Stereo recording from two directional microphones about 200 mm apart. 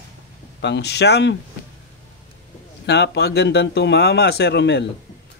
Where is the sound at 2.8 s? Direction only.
55° left (ahead or behind).